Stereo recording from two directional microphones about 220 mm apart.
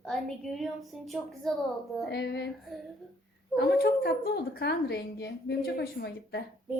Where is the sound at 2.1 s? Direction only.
50° left (ahead or behind).